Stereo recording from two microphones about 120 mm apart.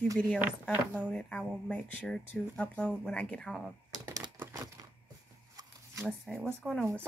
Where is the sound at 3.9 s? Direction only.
30° right (ahead or behind).